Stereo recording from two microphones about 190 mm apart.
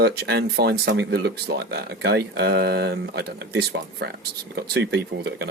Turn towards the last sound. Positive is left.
turn(degrees=-60)  # may be behind; listen again after turning